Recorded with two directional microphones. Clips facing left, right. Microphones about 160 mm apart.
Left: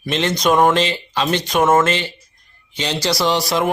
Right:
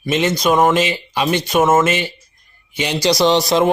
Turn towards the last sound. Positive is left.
turn(degrees=-20)  # may be behind; listen again after turning